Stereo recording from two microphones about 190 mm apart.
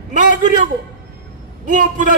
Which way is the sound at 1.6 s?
45° right (ahead or behind).